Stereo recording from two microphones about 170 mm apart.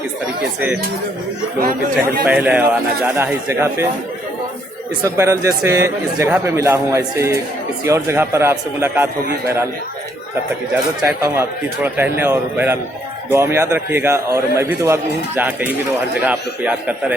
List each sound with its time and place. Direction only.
2.2 s speech: 10° right (ahead or behind)
5.0 s speech: 15° right (ahead or behind)
11.2 s speech: 15° right (ahead or behind)